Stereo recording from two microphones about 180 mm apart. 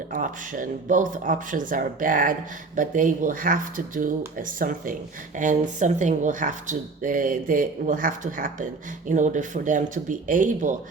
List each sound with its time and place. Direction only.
0.1 s speech: 50° right (ahead or behind)